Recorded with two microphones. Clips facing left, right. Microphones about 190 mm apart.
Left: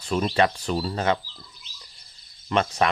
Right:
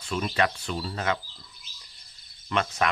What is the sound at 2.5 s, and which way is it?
Speech, 30° left (ahead or behind).